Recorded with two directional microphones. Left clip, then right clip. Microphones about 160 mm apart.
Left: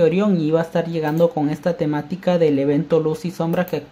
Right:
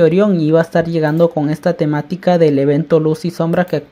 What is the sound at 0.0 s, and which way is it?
Speech, 30° right (ahead or behind).